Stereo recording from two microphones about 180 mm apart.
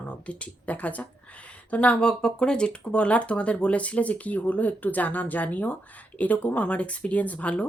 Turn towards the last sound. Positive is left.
turn(degrees=5)  # may be behind; listen again after turning